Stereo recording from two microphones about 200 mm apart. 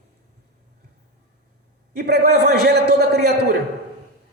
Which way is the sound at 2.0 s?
50° right (ahead or behind).